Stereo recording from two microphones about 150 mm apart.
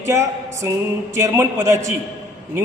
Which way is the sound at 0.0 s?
20° right (ahead or behind).